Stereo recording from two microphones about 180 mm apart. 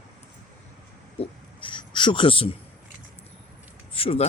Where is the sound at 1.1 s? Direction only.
30° left (ahead or behind).